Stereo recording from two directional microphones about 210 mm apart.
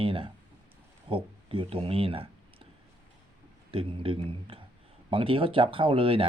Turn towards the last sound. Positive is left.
turn(degrees=-25)  # may be behind; listen again after turning